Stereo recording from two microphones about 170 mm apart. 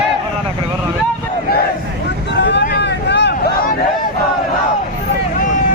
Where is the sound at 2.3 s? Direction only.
90° left.